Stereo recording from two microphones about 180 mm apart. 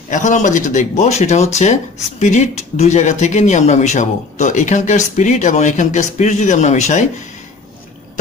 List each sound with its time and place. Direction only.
0.1 s speech: 45° left (ahead or behind)